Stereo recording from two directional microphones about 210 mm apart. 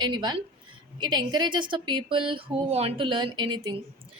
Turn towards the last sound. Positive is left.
turn(degrees=-20)  # may be behind; listen again after turning